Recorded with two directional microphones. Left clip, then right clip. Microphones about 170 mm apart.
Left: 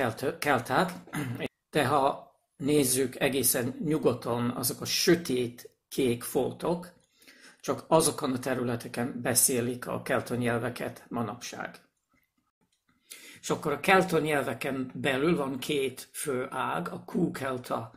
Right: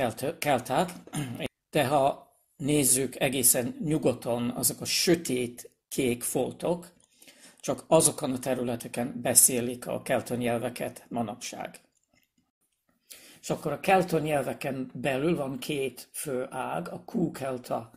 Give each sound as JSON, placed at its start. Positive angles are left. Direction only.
{"t": 0.0, "sound": "speech", "side_deg": -40}
{"t": 13.2, "sound": "speech", "side_deg": -35}